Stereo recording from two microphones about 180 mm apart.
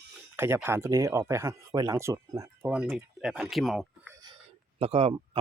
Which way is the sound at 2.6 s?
5° right (ahead or behind).